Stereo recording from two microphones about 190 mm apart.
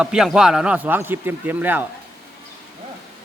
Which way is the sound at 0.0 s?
5° right (ahead or behind).